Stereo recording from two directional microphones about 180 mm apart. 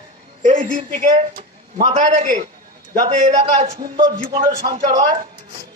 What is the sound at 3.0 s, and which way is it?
A man's voice, 20° right (ahead or behind).